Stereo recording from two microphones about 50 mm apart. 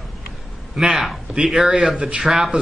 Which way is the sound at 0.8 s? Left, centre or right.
Centre.